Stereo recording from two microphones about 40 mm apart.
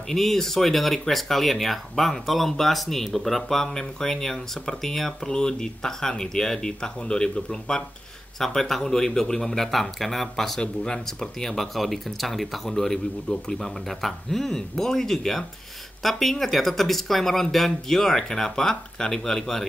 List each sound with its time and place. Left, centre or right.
0.1 s speech: centre
8.4 s speech: centre
10.6 s speech: left
11.1 s speech: centre